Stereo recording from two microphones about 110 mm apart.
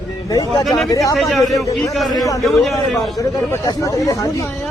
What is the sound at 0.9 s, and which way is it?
Speech, 30° left (ahead or behind).